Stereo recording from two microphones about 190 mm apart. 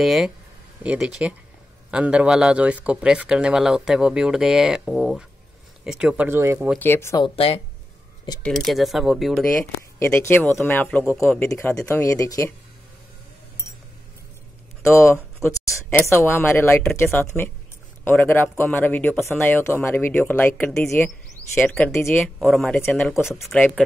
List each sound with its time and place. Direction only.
0.0 s speech: centre (ahead or behind)
6.8 s speech: 15° left (ahead or behind)
7.3 s speech: 30° left (ahead or behind)
8.4 s speech: 5° left (ahead or behind)
9.8 s speech: 10° left (ahead or behind)
14.8 s speech: 15° left (ahead or behind)